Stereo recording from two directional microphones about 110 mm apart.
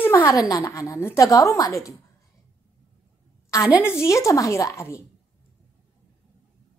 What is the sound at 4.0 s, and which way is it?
Speech, 25° left (ahead or behind).